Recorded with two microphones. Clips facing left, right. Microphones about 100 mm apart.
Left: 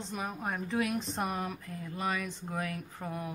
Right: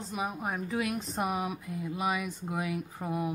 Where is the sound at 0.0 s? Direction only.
5° right (ahead or behind).